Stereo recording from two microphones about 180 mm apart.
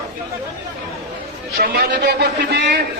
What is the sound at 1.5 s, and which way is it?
A man's voice, 50° right (ahead or behind).